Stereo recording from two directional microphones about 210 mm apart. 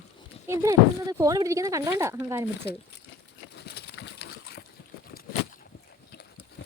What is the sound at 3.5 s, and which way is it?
Horse, 50° left (ahead or behind).